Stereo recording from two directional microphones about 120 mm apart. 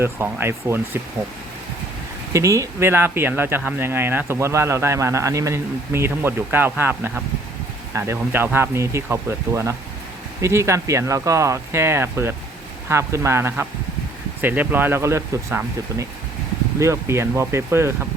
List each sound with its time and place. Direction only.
0.0 s speech: 20° right (ahead or behind)
2.3 s speech: 25° right (ahead or behind)